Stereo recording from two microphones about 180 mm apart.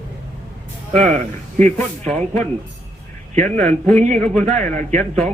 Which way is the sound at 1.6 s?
40° right (ahead or behind).